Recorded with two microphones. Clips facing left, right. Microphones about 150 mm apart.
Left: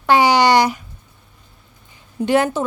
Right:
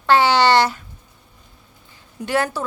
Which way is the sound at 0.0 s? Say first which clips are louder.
Left 2 dB; 15° left (ahead or behind).